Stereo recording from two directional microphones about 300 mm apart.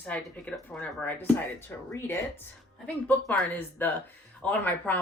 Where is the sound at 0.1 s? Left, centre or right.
Centre.